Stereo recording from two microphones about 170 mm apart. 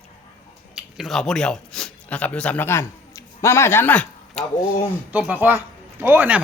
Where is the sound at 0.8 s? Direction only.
Centre (ahead or behind).